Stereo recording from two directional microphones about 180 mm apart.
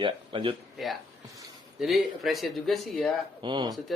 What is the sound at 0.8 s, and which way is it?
Speech, centre (ahead or behind).